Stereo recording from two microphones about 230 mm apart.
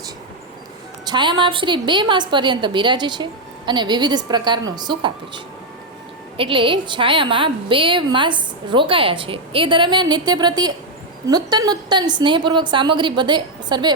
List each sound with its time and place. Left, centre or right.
1.0 s a woman's voice: centre